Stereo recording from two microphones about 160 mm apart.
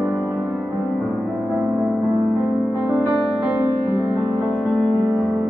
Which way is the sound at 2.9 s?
10° right (ahead or behind).